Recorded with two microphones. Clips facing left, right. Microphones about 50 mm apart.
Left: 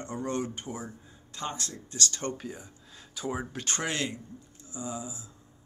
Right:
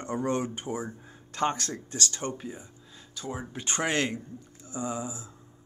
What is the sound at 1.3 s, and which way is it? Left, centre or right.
Speech, right.